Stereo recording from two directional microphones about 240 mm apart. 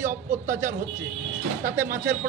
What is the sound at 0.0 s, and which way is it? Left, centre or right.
Speech, centre.